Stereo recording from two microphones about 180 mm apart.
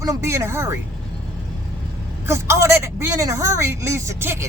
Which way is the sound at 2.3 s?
15° right (ahead or behind).